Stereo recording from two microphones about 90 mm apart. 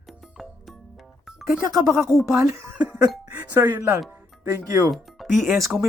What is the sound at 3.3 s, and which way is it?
Speech, 20° right (ahead or behind).